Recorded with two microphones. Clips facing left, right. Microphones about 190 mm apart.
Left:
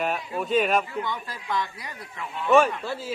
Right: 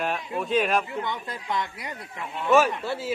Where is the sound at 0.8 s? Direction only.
20° right (ahead or behind).